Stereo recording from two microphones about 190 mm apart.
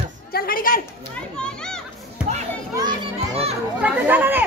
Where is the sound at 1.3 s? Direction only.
5° left (ahead or behind).